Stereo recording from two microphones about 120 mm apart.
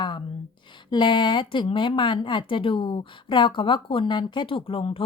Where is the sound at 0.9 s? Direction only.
40° left (ahead or behind).